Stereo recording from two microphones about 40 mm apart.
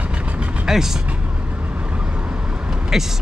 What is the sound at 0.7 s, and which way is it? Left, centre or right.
Speech, centre.